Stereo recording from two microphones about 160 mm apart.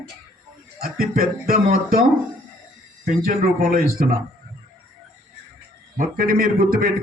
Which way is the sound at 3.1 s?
65° right (ahead or behind).